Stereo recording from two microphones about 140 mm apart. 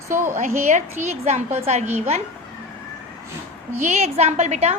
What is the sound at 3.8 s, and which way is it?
Speech, 55° right (ahead or behind).